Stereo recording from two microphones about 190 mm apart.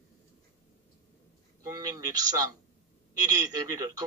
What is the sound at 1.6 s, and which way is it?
Speech, 20° right (ahead or behind).